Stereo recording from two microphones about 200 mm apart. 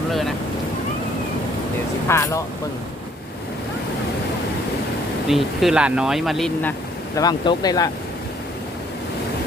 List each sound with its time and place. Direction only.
0.1 s boat: centre (ahead or behind)
2.0 s speech: 15° left (ahead or behind)
5.3 s speech: centre (ahead or behind)
7.2 s speech: 20° left (ahead or behind)